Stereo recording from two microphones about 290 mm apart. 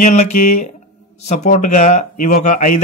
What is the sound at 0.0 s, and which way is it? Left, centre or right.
Speech, left.